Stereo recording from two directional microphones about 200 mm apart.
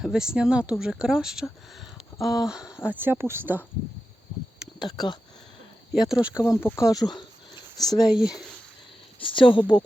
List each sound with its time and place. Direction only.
0.0 s speech: centre (ahead or behind)
4.8 s speech: 20° left (ahead or behind)
5.9 s speech: 5° right (ahead or behind)
6.4 s speech: 15° left (ahead or behind)
8.1 s speech: 5° right (ahead or behind)
9.2 s speech: 25° left (ahead or behind)